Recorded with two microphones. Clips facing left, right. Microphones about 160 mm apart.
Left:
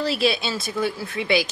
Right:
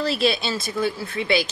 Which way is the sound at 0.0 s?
10° left (ahead or behind).